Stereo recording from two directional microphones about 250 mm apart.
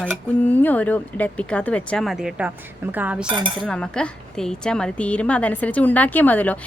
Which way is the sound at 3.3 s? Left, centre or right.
Centre.